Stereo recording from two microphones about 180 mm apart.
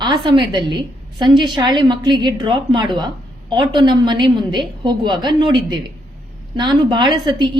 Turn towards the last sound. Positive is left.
turn(degrees=-25)  # may be behind; listen again after turning